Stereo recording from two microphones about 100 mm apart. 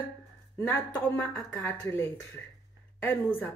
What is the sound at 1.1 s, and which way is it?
Speech, 5° left (ahead or behind).